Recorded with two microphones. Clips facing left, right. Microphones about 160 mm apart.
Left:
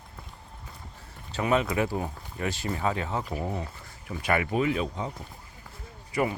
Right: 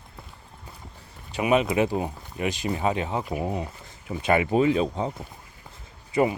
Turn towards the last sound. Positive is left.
turn(degrees=-25)  # may be behind; listen again after turning